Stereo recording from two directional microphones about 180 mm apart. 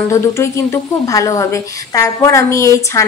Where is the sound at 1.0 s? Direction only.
20° left (ahead or behind).